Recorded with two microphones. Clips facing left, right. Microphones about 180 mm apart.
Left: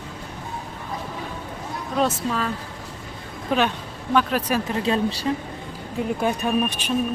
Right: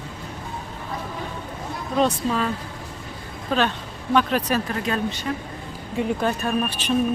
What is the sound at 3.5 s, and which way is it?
Speech, 15° left (ahead or behind).